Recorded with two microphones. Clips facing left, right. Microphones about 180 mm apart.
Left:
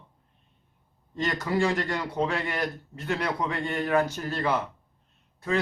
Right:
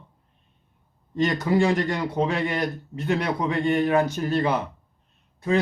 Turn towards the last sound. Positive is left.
turn(degrees=-20)  # may be behind; listen again after turning